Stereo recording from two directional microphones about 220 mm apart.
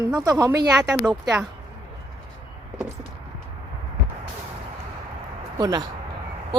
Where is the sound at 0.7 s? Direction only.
Centre (ahead or behind).